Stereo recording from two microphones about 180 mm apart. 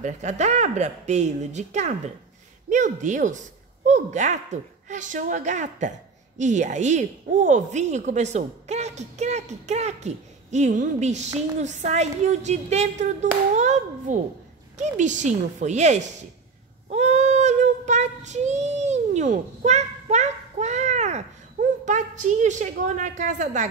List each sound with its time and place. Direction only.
0.0 s speech: 40° right (ahead or behind)
16.9 s child singing: 40° right (ahead or behind)